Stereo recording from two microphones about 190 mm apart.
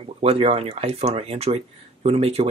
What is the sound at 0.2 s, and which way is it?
Speech, 30° right (ahead or behind).